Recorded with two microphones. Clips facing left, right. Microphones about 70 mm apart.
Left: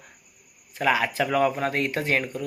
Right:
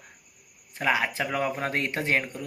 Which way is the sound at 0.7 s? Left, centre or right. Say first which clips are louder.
Left 3 dB; right.